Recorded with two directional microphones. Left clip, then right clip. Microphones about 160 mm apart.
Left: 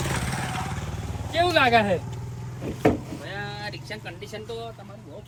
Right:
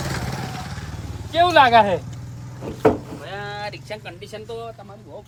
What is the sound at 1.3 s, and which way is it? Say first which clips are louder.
Speech: right 6 dB; 30° right (ahead or behind).